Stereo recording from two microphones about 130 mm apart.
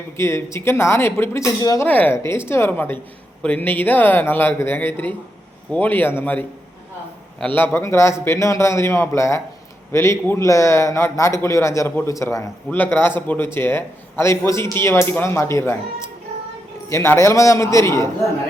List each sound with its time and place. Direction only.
0.2 s a man's voice: 20° left (ahead or behind)
1.9 s a man's voice: 15° left (ahead or behind)